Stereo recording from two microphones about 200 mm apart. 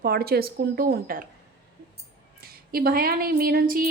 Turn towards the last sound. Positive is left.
turn(degrees=-45)  # may be behind; listen again after turning